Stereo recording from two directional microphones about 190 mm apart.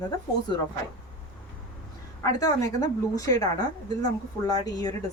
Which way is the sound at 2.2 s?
15° left (ahead or behind).